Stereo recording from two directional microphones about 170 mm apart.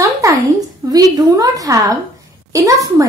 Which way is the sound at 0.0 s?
20° right (ahead or behind).